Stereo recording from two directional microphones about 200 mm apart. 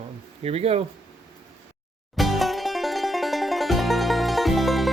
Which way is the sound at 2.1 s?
Centre (ahead or behind).